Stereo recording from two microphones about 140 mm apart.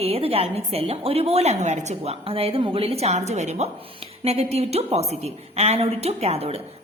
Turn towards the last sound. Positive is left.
turn(degrees=-45)  # may be behind; listen again after turning